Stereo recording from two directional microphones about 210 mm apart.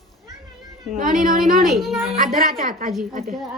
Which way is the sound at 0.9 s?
40° right (ahead or behind).